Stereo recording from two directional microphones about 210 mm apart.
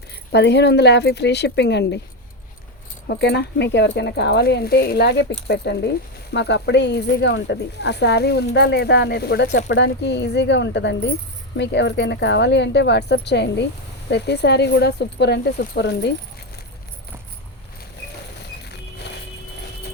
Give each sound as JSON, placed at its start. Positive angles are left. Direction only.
{"t": 0.1, "sound": "speech", "side_deg": 55}
{"t": 3.1, "sound": "speech", "side_deg": 50}